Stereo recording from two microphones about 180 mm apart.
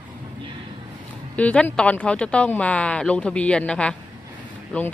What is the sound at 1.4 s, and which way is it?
Speech, 10° left (ahead or behind).